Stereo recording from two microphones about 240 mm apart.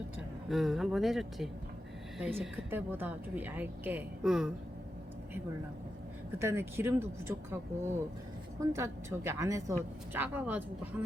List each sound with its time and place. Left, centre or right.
0.5 s a woman's voice: centre
6.4 s a woman's voice: centre
8.6 s a woman's voice: centre